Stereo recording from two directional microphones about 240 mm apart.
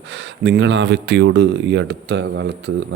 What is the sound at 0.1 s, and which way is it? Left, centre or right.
Speech, right.